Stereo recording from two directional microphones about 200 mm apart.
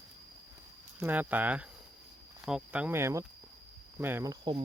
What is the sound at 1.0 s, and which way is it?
Cricket, 10° right (ahead or behind).